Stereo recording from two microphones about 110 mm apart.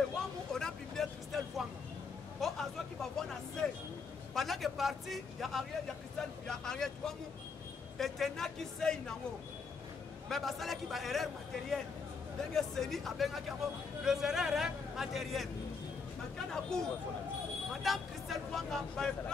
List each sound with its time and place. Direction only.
0.1 s a sound: 5° left (ahead or behind)
2.4 s speech: centre (ahead or behind)
10.2 s speech: centre (ahead or behind)
12.5 s speech: 5° left (ahead or behind)